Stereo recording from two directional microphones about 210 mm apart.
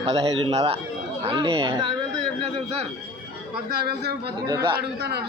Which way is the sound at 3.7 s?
50° right (ahead or behind).